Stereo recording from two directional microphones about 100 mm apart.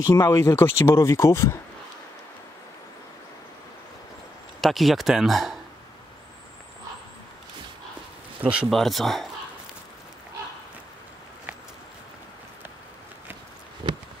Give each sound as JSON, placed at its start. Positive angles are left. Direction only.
{"t": 0.1, "sound": "speech", "side_deg": 35}
{"t": 4.6, "sound": "speech", "side_deg": 0}
{"t": 8.4, "sound": "speech", "side_deg": -10}
{"t": 8.6, "sound": "speech", "side_deg": 0}
{"t": 13.8, "sound": "a sound", "side_deg": -55}